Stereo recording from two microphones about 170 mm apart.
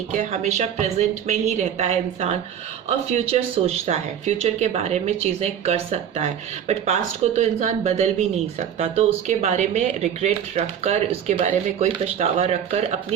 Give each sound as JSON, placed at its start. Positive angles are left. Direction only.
{"t": 0.1, "sound": "speech", "side_deg": -45}